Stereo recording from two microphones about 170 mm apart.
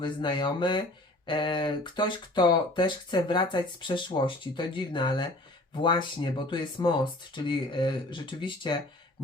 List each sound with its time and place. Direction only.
0.0 s speech: 30° left (ahead or behind)